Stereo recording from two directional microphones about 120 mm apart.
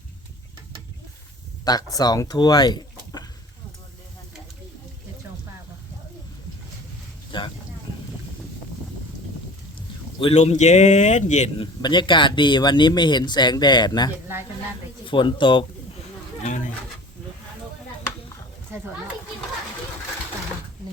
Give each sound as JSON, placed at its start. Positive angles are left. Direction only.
{"t": 1.6, "sound": "speech", "side_deg": 30}
{"t": 7.3, "sound": "a sound", "side_deg": 45}
{"t": 10.3, "sound": "speech", "side_deg": 70}
{"t": 11.5, "sound": "speech", "side_deg": 40}
{"t": 16.4, "sound": "speech", "side_deg": 90}